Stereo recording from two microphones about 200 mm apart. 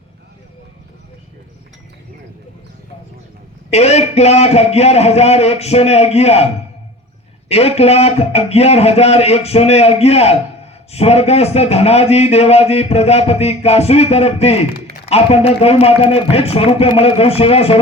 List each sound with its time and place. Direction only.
3.7 s a man's voice: 30° left (ahead or behind)